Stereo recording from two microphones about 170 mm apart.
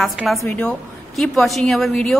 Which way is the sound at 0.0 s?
Centre (ahead or behind).